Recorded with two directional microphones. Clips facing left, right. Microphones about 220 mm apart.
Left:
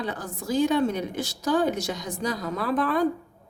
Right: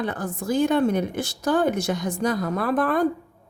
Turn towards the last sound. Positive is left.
turn(degrees=-50)  # may be behind; listen again after turning